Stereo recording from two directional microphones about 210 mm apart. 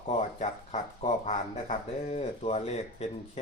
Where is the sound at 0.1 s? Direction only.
30° left (ahead or behind).